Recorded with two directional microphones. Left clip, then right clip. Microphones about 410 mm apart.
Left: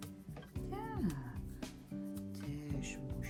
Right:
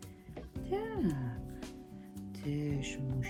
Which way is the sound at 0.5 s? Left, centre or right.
Centre.